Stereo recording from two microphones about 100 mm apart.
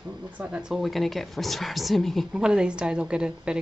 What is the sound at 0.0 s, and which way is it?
A woman's voice, 10° right (ahead or behind).